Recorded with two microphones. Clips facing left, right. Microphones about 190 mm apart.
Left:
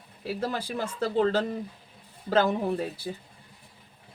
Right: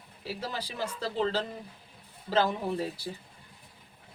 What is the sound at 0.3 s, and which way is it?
Speech, 50° left (ahead or behind).